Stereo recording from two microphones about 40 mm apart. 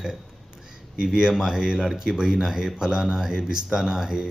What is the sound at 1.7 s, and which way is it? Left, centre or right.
Speech, centre.